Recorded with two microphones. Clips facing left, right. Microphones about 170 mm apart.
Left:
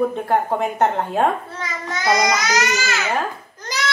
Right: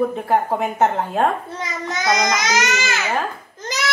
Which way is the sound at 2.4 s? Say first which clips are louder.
Even; 20° right (ahead or behind).